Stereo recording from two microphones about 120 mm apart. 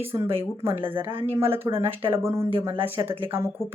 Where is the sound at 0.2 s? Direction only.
20° right (ahead or behind).